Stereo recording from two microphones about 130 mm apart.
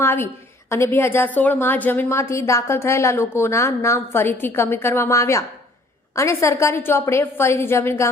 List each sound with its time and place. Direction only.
0.0 s a woman's voice: 20° left (ahead or behind)